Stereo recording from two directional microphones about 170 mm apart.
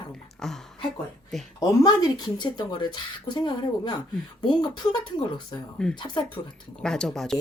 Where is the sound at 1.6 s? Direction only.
25° left (ahead or behind).